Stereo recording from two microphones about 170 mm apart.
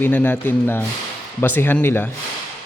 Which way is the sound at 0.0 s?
10° left (ahead or behind).